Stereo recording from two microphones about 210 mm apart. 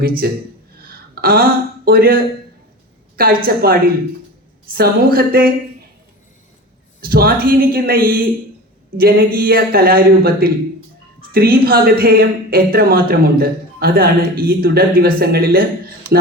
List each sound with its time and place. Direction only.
0.0 s a woman's voice: 45° right (ahead or behind)
0.8 s a sound: 45° right (ahead or behind)
3.4 s a woman's voice: 45° right (ahead or behind)
7.0 s a woman's voice: 45° right (ahead or behind)